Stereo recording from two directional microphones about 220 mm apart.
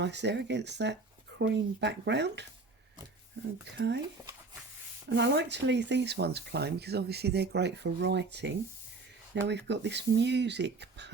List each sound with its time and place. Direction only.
0.0 s speech: 50° right (ahead or behind)
3.7 s speech: 50° right (ahead or behind)
5.0 s speech: 50° right (ahead or behind)